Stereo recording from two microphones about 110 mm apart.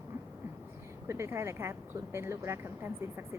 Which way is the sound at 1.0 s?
25° right (ahead or behind).